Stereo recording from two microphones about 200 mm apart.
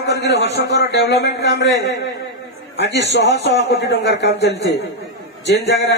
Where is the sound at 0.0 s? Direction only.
60° left (ahead or behind).